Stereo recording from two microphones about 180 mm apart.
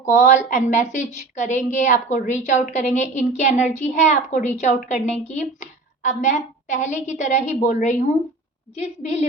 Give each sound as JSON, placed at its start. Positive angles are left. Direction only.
{"t": 0.0, "sound": "a woman's voice", "side_deg": 40}